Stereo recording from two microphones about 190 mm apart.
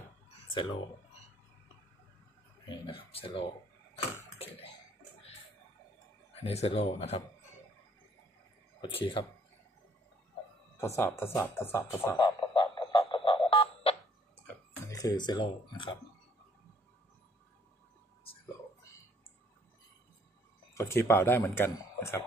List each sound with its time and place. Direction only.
0.5 s speech: 25° left (ahead or behind)
2.6 s speech: 25° left (ahead or behind)
6.4 s a man's voice: 30° left (ahead or behind)
8.8 s speech: 25° left (ahead or behind)
11.0 s speech: 15° left (ahead or behind)
12.2 s frog: 25° left (ahead or behind)
14.9 s speech: 20° left (ahead or behind)
20.7 s speech: 15° left (ahead or behind)